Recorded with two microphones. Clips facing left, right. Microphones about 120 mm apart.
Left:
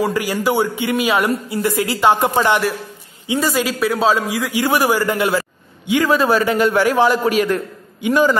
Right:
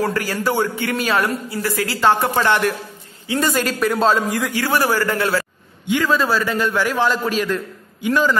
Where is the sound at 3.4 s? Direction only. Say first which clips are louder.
Even; 5° left (ahead or behind).